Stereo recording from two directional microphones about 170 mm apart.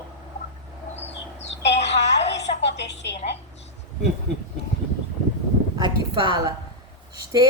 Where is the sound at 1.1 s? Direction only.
90° left.